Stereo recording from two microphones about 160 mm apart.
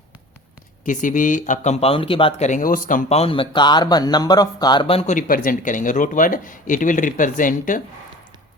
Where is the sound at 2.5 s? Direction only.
55° left (ahead or behind).